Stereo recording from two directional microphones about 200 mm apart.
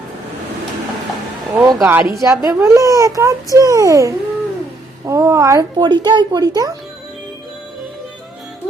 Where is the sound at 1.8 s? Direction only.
10° right (ahead or behind).